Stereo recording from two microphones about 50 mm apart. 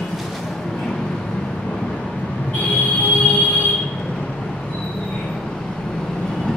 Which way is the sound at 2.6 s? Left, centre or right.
Left.